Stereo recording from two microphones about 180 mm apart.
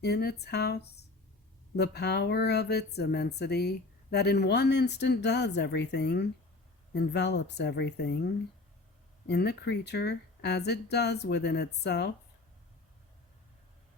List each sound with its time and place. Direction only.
0.0 s speech: 65° left (ahead or behind)
9.2 s speech: 65° left (ahead or behind)